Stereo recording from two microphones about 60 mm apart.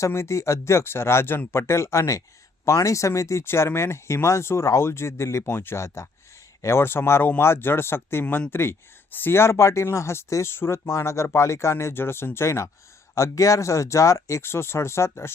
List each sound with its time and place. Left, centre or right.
0.1 s speech: left
3.4 s speech: left
5.4 s speech: left
6.8 s speech: left